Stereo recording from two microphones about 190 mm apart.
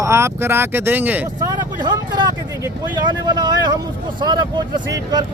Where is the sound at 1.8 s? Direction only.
25° right (ahead or behind).